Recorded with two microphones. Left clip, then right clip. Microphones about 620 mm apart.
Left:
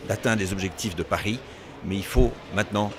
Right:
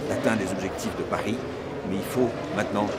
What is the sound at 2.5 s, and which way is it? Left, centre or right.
Speech, left.